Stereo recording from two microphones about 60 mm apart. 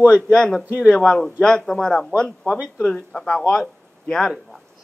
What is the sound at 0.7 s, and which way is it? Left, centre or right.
Speech, right.